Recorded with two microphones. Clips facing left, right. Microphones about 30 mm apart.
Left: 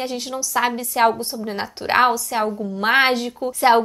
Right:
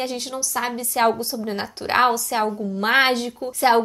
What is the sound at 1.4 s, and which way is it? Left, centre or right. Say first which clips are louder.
A woman's voice: left 1 dB; centre.